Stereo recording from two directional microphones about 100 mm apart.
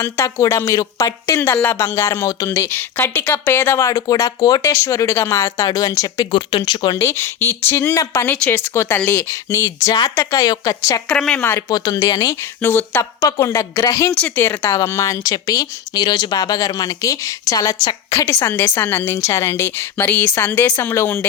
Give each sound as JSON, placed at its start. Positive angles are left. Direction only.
{"t": 0.0, "sound": "a woman's voice", "side_deg": 30}
{"t": 2.5, "sound": "a woman's voice", "side_deg": 20}
{"t": 3.8, "sound": "speech", "side_deg": 40}
{"t": 4.6, "sound": "a woman's voice", "side_deg": 25}
{"t": 11.1, "sound": "speech", "side_deg": 10}
{"t": 11.7, "sound": "speech", "side_deg": 40}
{"t": 12.6, "sound": "a woman's voice", "side_deg": 20}
{"t": 13.2, "sound": "speech", "side_deg": 35}
{"t": 14.1, "sound": "a woman's voice", "side_deg": 15}